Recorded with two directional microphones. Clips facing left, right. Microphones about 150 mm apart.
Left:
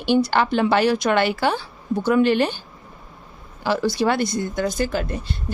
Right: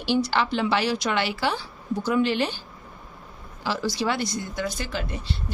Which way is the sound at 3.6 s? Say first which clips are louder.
Left 6 dB; 55° left (ahead or behind).